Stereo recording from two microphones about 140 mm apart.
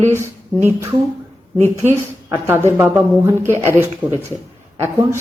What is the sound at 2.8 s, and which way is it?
Speech, 15° right (ahead or behind).